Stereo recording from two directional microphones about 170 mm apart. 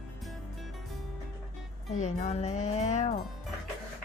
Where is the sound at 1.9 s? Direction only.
45° left (ahead or behind).